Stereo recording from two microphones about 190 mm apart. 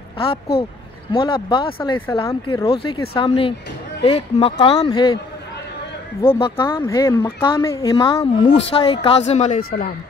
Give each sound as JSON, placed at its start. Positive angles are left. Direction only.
{"t": 1.1, "sound": "speech", "side_deg": 25}
{"t": 6.2, "sound": "speech", "side_deg": 10}
{"t": 9.6, "sound": "speech", "side_deg": 50}